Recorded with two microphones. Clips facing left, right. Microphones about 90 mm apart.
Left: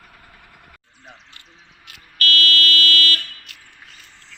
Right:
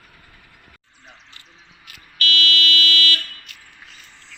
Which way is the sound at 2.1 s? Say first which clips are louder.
Left 1 dB; 40° left (ahead or behind).